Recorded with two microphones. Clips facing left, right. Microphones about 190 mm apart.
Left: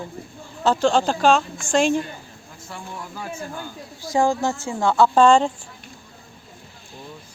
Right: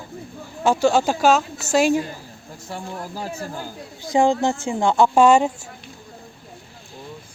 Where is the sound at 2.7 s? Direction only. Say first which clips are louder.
Right 4 dB; 35° right (ahead or behind).